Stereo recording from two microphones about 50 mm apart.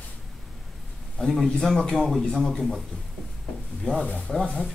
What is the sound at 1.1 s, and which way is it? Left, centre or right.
A man's voice, centre.